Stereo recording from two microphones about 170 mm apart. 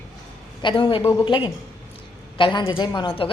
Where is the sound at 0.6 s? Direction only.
30° left (ahead or behind).